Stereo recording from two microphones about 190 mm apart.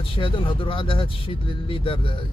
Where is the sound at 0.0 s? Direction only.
25° left (ahead or behind).